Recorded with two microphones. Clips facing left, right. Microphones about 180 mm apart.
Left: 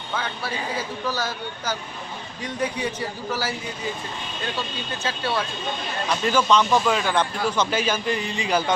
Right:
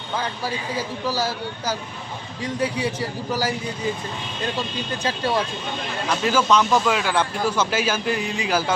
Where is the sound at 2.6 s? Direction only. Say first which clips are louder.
Right 2 dB; 10° right (ahead or behind).